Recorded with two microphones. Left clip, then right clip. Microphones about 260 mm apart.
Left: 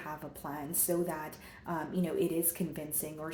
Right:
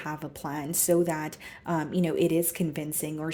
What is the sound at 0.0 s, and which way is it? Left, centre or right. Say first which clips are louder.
Speech: right 6 dB; right.